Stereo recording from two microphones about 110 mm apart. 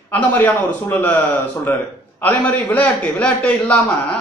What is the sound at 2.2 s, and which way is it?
A man's voice, 15° left (ahead or behind).